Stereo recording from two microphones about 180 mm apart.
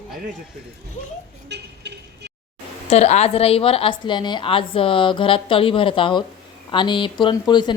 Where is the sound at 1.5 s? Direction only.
70° right (ahead or behind).